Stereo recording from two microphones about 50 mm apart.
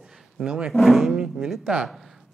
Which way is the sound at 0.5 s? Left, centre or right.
Centre.